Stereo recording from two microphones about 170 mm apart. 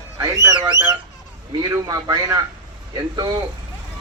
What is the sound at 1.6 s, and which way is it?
A man's voice, 25° right (ahead or behind).